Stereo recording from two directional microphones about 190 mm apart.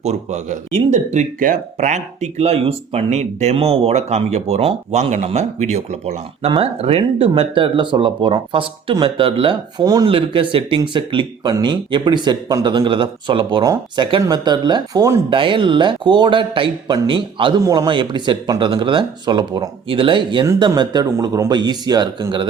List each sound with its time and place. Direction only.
0.0 s speech: 35° right (ahead or behind)